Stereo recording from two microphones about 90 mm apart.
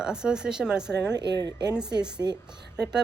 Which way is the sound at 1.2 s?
45° right (ahead or behind).